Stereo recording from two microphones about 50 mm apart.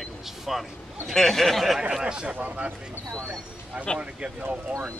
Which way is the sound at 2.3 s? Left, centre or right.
Right.